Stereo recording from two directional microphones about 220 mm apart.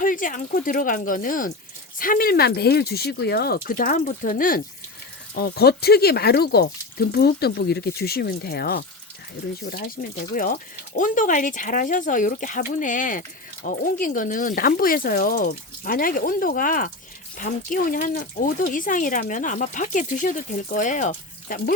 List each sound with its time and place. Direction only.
0.0 s speech: 35° left (ahead or behind)